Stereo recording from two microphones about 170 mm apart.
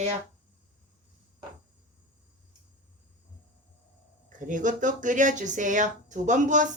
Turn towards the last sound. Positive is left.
turn(degrees=-50)  # may be behind; listen again after turning